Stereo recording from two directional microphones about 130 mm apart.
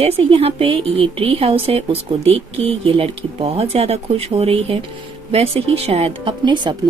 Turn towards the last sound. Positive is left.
turn(degrees=-35)  # may be behind; listen again after turning